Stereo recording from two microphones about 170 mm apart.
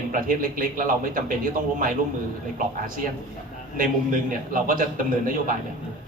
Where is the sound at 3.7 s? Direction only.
55° right (ahead or behind).